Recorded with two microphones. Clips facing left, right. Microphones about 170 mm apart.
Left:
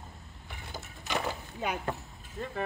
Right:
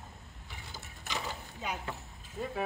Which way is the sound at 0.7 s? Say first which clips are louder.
Left 6 dB; 60° left (ahead or behind).